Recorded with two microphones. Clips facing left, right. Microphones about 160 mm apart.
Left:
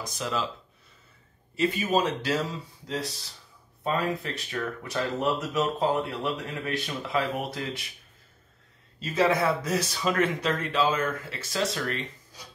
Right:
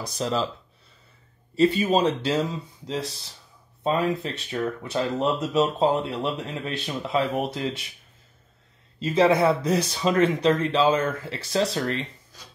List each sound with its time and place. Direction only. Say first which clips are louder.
0.2 s speech: right 5 dB; 35° right (ahead or behind)
1.5 s speech: right 5 dB; 30° right (ahead or behind)
9.0 s speech: right 5 dB; 25° right (ahead or behind)